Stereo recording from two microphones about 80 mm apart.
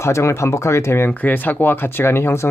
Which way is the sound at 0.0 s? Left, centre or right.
Left.